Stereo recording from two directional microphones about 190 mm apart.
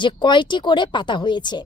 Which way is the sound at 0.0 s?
25° left (ahead or behind).